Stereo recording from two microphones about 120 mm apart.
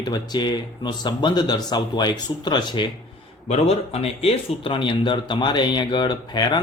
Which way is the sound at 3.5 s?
55° left (ahead or behind).